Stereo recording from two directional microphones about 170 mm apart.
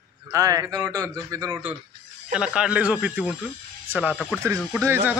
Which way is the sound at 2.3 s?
5° right (ahead or behind).